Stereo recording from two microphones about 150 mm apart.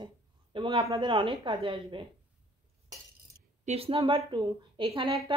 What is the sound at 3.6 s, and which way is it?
Speech, 40° right (ahead or behind).